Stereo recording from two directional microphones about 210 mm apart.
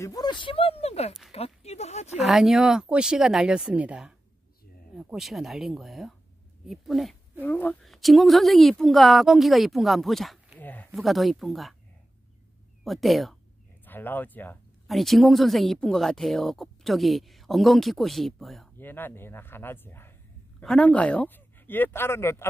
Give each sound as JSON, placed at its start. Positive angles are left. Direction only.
{"t": 0.0, "sound": "speech", "side_deg": 20}
{"t": 1.3, "sound": "a sound", "side_deg": 30}
{"t": 2.2, "sound": "speech", "side_deg": 0}
{"t": 12.8, "sound": "speech", "side_deg": 0}